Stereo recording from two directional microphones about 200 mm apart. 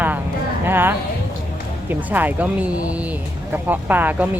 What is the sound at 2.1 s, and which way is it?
Speech, 10° right (ahead or behind).